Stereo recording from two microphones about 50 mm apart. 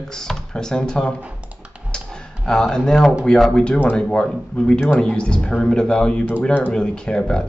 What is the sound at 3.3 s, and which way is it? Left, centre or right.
Speech, centre.